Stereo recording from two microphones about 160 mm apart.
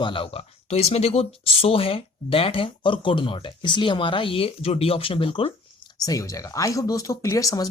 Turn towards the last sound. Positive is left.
turn(degrees=20)  # may be behind; listen again after turning